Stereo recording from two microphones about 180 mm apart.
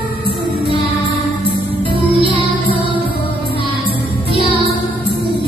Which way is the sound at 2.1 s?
30° right (ahead or behind).